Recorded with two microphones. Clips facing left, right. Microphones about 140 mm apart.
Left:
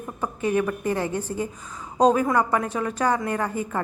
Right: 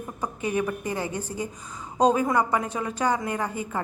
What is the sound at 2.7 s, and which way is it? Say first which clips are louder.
Speech: left 2 dB; 30° right (ahead or behind).